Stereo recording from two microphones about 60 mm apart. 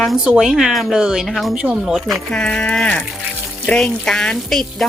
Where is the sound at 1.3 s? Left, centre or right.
Centre.